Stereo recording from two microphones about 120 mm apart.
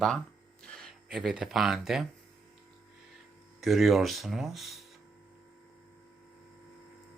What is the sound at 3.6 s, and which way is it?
Speech, centre (ahead or behind).